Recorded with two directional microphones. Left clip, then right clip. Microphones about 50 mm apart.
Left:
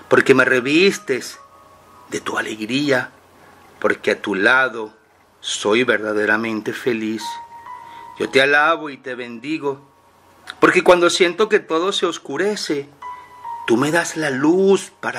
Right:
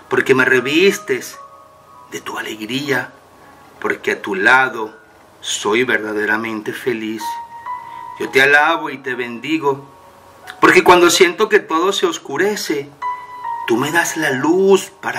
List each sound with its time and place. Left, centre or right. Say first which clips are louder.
0.1 s speech: even; left